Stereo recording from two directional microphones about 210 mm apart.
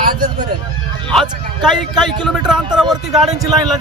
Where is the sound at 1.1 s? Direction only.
Centre (ahead or behind).